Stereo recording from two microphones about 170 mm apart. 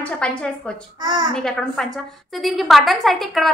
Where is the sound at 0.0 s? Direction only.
5° left (ahead or behind).